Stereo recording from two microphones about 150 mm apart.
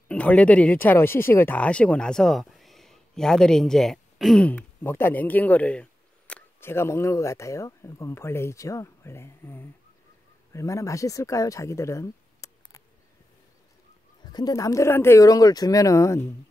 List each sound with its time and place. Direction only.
0.1 s speech: 10° left (ahead or behind)
14.3 s speech: 25° left (ahead or behind)